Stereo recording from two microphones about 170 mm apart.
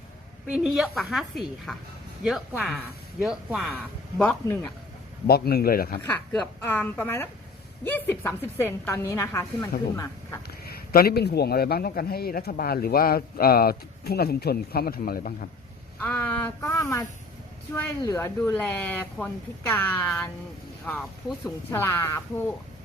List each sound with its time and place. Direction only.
0.4 s a woman's voice: 5° right (ahead or behind); by 4.7 s 10° left (ahead or behind)
5.2 s a man's voice: 65° left (ahead or behind)
6.0 s a woman's voice: 5° left (ahead or behind)
10.7 s a man's voice: 65° left (ahead or behind)
16.0 s a woman's voice: 10° left (ahead or behind)
21.7 s a woman's voice: 15° left (ahead or behind)